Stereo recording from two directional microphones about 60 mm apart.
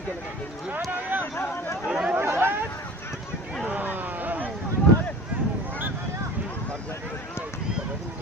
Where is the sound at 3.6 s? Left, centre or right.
Right.